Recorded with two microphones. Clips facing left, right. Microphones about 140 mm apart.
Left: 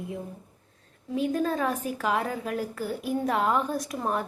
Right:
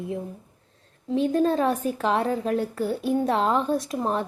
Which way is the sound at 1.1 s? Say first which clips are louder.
Right 5 dB; 30° right (ahead or behind).